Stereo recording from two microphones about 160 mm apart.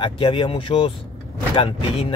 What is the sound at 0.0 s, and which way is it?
Speech, 30° left (ahead or behind).